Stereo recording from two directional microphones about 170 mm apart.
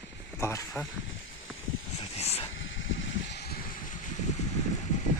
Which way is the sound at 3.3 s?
75° left (ahead or behind).